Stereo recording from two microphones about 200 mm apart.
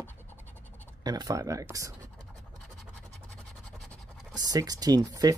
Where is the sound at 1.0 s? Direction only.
20° right (ahead or behind).